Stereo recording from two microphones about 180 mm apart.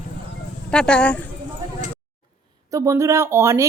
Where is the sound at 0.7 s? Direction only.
5° left (ahead or behind).